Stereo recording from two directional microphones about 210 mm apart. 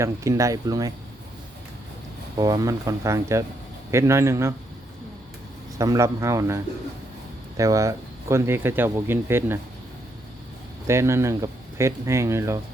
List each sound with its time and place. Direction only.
0.0 s speech: 15° right (ahead or behind)
2.4 s speech: 15° right (ahead or behind)
5.7 s speech: 15° right (ahead or behind)
10.8 s speech: 15° right (ahead or behind)